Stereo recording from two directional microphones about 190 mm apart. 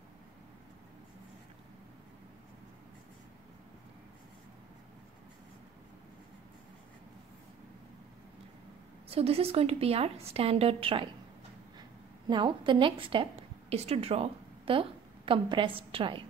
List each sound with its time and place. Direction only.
9.1 s a woman's voice: 30° right (ahead or behind)
12.3 s a woman's voice: 25° right (ahead or behind)